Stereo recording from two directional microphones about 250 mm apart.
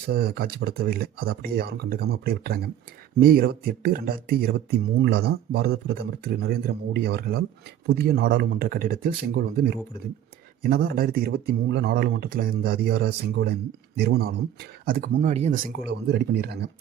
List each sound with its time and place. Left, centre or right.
0.1 s speech: right